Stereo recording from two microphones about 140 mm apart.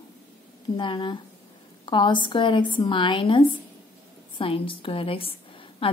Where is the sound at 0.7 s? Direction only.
35° left (ahead or behind).